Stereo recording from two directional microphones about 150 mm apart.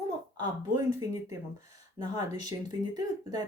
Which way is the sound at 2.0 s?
25° right (ahead or behind).